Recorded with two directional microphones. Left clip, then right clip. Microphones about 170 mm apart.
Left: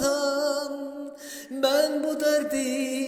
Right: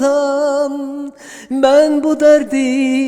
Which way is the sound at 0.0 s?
40° right (ahead or behind).